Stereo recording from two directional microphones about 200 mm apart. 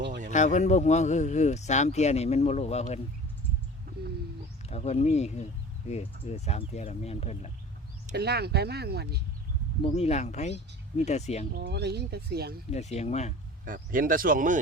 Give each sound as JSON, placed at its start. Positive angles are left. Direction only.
{"t": 0.3, "sound": "speech", "side_deg": 35}
{"t": 4.7, "sound": "speech", "side_deg": 35}
{"t": 8.1, "sound": "speech", "side_deg": -55}
{"t": 9.8, "sound": "speech", "side_deg": 30}
{"t": 11.5, "sound": "speech", "side_deg": -55}
{"t": 12.7, "sound": "speech", "side_deg": 35}
{"t": 13.7, "sound": "speech", "side_deg": -45}